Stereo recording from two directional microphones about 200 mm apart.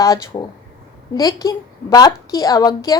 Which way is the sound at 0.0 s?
15° left (ahead or behind).